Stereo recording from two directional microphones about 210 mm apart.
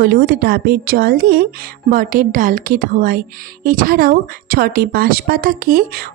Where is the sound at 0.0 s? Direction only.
45° right (ahead or behind).